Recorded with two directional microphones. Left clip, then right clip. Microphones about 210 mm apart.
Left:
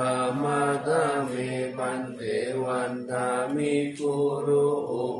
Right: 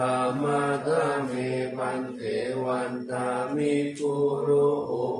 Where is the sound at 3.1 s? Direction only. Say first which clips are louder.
Left 1 dB; 15° left (ahead or behind).